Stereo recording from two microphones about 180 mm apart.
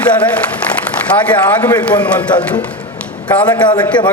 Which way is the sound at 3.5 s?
25° left (ahead or behind).